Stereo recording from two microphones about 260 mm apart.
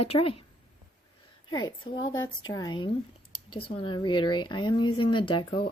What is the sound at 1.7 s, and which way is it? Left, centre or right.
Speech, centre.